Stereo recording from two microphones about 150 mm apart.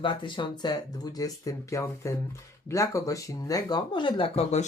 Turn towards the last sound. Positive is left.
turn(degrees=45)  # may be behind; listen again after turning